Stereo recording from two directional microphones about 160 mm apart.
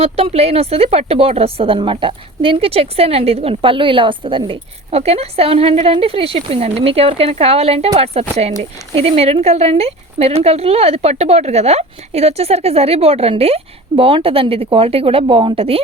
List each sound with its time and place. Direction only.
0.0 s a woman's voice: 40° right (ahead or behind)